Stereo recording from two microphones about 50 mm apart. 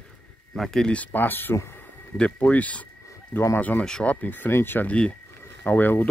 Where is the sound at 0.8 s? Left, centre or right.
Left.